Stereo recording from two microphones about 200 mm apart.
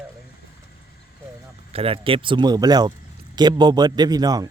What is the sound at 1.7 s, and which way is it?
Speech, 30° right (ahead or behind).